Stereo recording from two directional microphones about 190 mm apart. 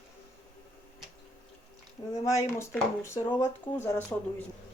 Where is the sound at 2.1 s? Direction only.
15° left (ahead or behind).